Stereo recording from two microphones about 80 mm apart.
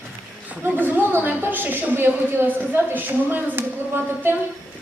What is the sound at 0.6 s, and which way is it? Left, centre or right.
A woman's voice, right.